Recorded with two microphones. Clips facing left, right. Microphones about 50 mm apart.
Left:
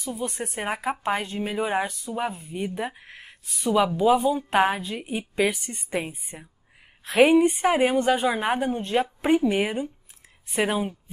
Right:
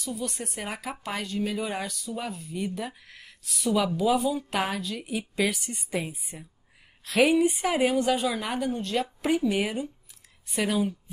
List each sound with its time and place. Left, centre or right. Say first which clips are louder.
0.0 s a woman's voice: left 3 dB; left
8.3 s a woman's voice: left 5 dB; left